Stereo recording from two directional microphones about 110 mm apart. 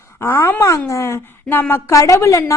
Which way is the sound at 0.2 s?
20° left (ahead or behind).